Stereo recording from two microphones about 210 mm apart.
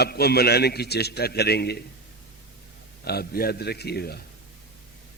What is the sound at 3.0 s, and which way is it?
A man's voice, 45° left (ahead or behind).